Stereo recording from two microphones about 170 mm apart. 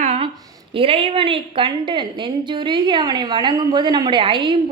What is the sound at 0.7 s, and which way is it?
A woman's voice, 30° right (ahead or behind).